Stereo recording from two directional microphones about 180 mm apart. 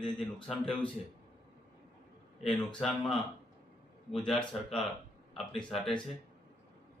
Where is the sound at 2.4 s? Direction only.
5° left (ahead or behind).